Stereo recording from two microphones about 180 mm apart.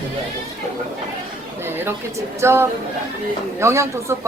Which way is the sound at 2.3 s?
15° right (ahead or behind).